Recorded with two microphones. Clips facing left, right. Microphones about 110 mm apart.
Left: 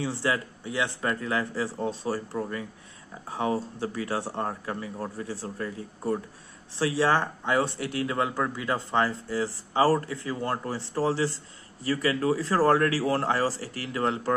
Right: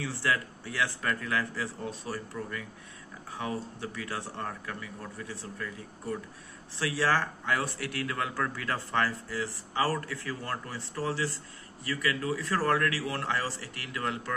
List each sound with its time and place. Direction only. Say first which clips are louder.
0.0 s a man's voice: left 3 dB; 25° left (ahead or behind)